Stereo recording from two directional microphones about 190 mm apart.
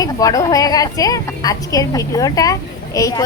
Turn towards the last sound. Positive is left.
turn(degrees=15)  # may be behind; listen again after turning